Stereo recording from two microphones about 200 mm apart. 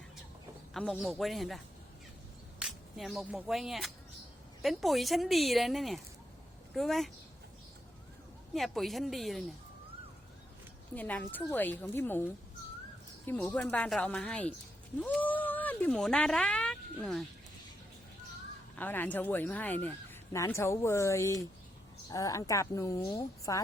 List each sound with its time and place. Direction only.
0.7 s a man's voice: centre (ahead or behind)
8.5 s speech: centre (ahead or behind)
10.9 s speech: 5° left (ahead or behind)
15.3 s a sound: 10° left (ahead or behind)
18.8 s speech: 10° left (ahead or behind)